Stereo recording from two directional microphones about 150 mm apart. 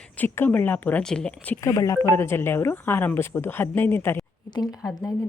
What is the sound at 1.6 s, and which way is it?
Speech, 20° left (ahead or behind).